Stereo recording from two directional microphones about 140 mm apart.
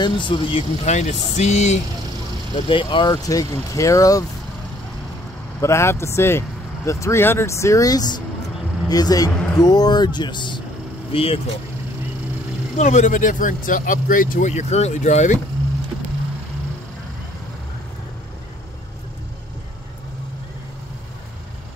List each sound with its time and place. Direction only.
0.0 s speech: 35° left (ahead or behind)
0.8 s speech: 55° left (ahead or behind)
2.5 s speech: 35° left (ahead or behind)
5.6 s speech: 20° left (ahead or behind); by 11.4 s 40° left (ahead or behind)
12.7 s speech: 60° left (ahead or behind)